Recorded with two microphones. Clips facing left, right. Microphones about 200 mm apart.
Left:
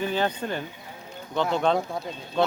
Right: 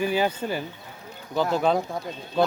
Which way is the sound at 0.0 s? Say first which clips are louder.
Right 2 dB; 10° right (ahead or behind).